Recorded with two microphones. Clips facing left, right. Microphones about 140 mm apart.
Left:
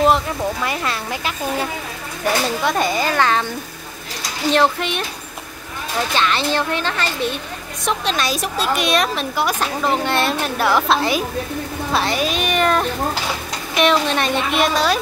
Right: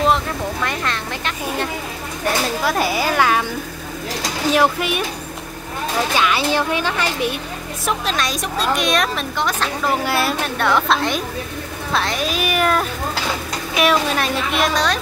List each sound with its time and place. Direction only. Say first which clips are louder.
0.7 s a woman's voice: left 1 dB; 5° left (ahead or behind)
4.5 s speech: even; 10° right (ahead or behind)
6.1 s speech: even; 10° right (ahead or behind)
7.8 s a woman's voice: left 1 dB; centre (ahead or behind)